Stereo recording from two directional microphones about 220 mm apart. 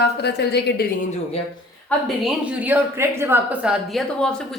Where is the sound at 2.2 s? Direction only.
5° right (ahead or behind).